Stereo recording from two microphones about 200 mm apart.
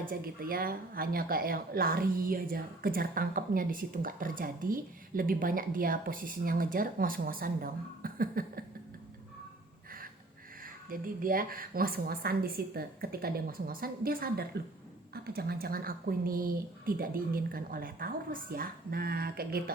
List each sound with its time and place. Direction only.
0.0 s a woman's voice: 45° right (ahead or behind)
10.6 s a woman's voice: 45° right (ahead or behind)